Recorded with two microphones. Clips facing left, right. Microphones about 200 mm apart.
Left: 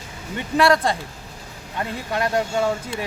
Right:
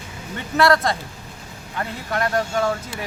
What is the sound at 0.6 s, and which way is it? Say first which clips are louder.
Speech: even; 15° left (ahead or behind).